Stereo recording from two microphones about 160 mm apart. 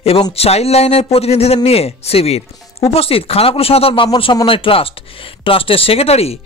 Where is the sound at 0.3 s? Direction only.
40° left (ahead or behind).